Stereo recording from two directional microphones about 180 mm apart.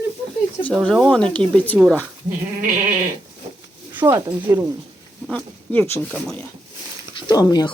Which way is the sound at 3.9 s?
15° right (ahead or behind).